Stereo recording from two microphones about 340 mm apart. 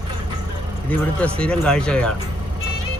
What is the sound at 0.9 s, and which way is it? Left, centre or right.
Speech, centre.